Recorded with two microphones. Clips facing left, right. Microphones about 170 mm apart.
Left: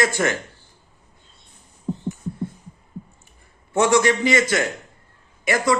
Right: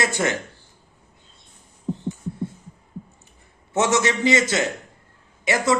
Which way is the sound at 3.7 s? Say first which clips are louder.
Left 3 dB; 20° right (ahead or behind).